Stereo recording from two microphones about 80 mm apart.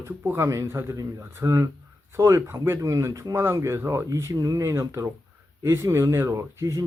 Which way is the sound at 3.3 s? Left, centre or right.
Right.